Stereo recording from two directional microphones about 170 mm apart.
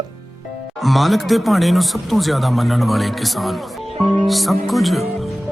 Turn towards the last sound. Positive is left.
turn(degrees=0)  # may be behind; listen again after turning